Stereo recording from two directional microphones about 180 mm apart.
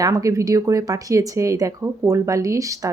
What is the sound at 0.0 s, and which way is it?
Speech, 20° right (ahead or behind).